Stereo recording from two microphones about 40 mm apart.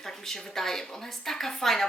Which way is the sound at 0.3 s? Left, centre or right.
Centre.